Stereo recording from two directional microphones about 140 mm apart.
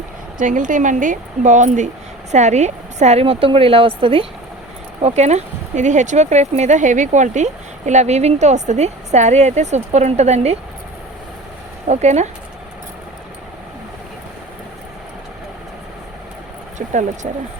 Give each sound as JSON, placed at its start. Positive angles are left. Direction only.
{"t": 0.3, "sound": "a woman's voice", "side_deg": -65}
{"t": 5.0, "sound": "speech", "side_deg": -55}
{"t": 11.9, "sound": "speech", "side_deg": -55}
{"t": 16.7, "sound": "speech", "side_deg": -60}